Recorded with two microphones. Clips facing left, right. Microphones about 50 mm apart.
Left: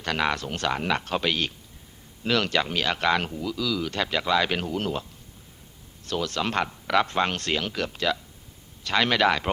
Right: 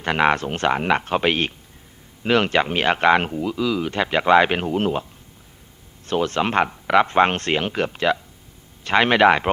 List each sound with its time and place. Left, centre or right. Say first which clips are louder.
0.0 s speech: right 7 dB; right
6.1 s speech: right 6 dB; right